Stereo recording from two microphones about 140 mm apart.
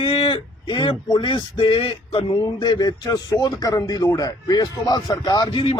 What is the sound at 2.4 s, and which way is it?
Speech, 30° left (ahead or behind).